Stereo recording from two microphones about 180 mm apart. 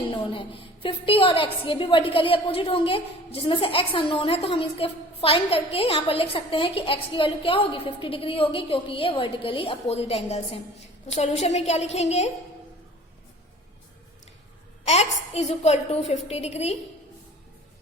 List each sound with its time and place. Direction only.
0.2 s a woman's voice: 30° left (ahead or behind)
14.8 s a woman's voice: 35° left (ahead or behind)